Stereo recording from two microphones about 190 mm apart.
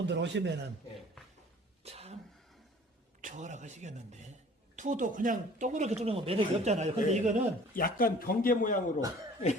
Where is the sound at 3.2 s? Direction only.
40° right (ahead or behind).